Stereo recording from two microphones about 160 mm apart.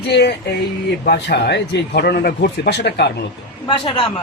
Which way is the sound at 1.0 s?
80° left.